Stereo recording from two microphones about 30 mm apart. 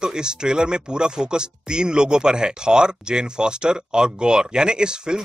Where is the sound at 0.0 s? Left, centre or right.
Right.